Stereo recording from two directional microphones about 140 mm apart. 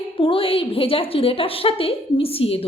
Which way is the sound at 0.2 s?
40° left (ahead or behind).